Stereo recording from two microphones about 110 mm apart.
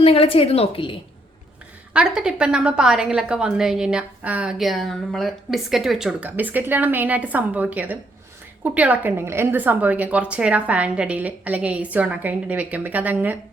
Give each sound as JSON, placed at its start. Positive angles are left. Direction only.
{"t": 0.0, "sound": "a woman's voice", "side_deg": 60}
{"t": 1.9, "sound": "a woman's voice", "side_deg": -10}
{"t": 6.2, "sound": "a woman's voice", "side_deg": -15}